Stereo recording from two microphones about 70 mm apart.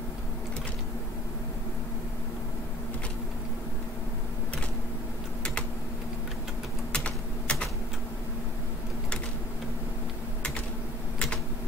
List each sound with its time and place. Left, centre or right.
6.9 s typing: centre